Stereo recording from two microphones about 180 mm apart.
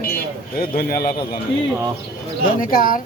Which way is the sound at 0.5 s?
55° left (ahead or behind).